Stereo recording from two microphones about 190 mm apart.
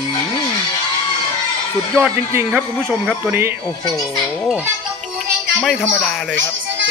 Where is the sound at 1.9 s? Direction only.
10° right (ahead or behind).